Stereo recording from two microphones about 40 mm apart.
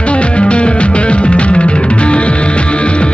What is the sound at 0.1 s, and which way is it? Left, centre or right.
Music, left.